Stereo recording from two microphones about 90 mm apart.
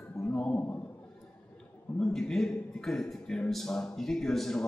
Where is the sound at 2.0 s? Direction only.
5° left (ahead or behind).